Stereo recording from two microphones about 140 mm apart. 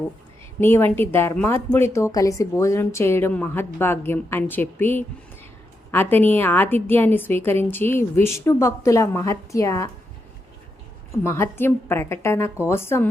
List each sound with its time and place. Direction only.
0.6 s a woman's voice: 15° left (ahead or behind)
11.2 s a woman's voice: 15° left (ahead or behind)